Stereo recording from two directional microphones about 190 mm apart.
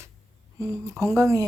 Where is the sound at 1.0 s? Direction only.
15° right (ahead or behind).